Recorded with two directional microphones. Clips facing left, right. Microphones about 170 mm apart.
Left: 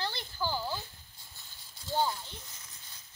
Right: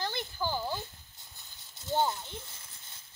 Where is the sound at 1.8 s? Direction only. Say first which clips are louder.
Right 2 dB; 20° right (ahead or behind).